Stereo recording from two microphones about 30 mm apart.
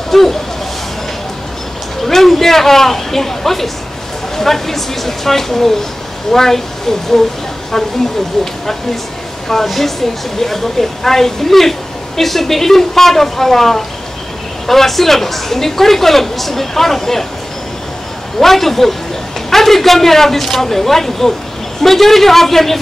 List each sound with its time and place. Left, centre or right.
0.1 s speech: centre
2.0 s a woman's voice: centre
9.5 s a woman's voice: centre
18.4 s a woman's voice: centre